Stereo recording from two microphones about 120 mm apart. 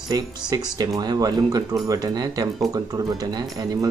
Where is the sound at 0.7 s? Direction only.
35° right (ahead or behind).